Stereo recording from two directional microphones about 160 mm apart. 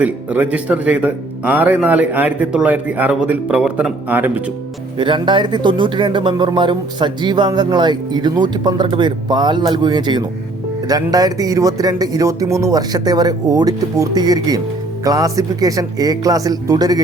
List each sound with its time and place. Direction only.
0.0 s speech: 10° right (ahead or behind)
4.9 s speech: 30° right (ahead or behind)